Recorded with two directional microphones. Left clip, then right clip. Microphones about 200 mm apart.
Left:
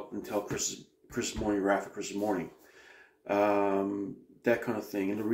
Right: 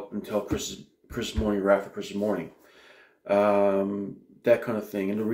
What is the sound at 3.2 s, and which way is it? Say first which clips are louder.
Speech: right 6 dB; centre (ahead or behind).